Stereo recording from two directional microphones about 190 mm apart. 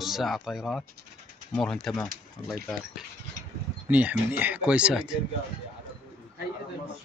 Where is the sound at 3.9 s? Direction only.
5° right (ahead or behind).